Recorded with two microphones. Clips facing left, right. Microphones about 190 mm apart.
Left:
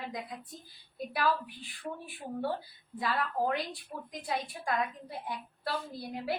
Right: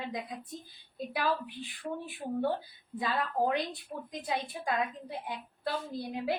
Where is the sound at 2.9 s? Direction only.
20° right (ahead or behind).